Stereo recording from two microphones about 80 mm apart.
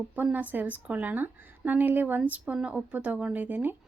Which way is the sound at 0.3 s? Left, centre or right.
Right.